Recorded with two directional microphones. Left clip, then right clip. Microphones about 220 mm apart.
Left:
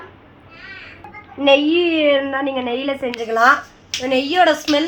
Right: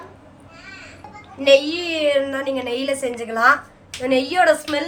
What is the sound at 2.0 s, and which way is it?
A woman's voice, 20° left (ahead or behind).